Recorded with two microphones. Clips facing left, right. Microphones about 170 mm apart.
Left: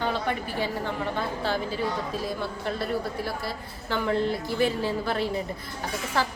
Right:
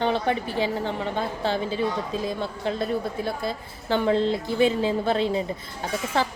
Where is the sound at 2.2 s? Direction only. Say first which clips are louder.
Right 3 dB; 20° right (ahead or behind).